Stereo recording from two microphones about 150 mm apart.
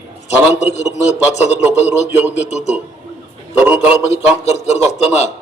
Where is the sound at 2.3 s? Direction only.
45° left (ahead or behind).